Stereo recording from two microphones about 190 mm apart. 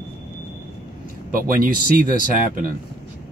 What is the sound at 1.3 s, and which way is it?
Speech, 50° right (ahead or behind).